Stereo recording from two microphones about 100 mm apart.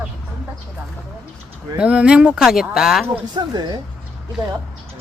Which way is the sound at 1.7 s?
10° right (ahead or behind).